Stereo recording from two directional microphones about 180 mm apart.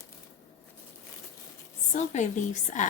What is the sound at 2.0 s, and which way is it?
Speech, 40° left (ahead or behind).